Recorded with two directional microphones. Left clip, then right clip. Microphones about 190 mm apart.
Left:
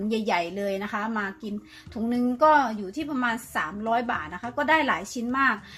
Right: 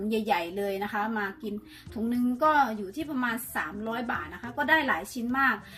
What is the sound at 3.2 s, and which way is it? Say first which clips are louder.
A woman's voice: left 4 dB; 45° left (ahead or behind).